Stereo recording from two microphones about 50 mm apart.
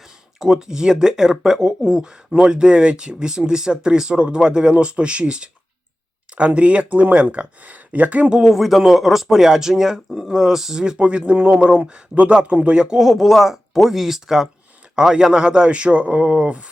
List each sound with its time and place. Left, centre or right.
0.3 s speech: centre; by 8.3 s right
8.3 s speech: centre
13.0 s speech: centre; by 16.6 s right